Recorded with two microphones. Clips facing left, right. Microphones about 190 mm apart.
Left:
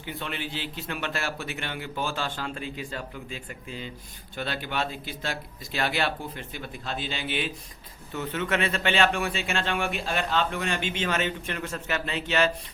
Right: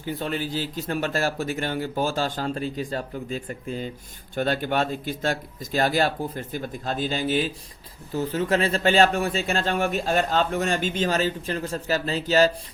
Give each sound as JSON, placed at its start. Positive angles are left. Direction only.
{"t": 0.0, "sound": "a man's voice", "side_deg": -40}